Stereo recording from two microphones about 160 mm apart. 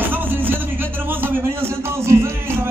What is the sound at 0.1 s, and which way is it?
Music, 10° right (ahead or behind).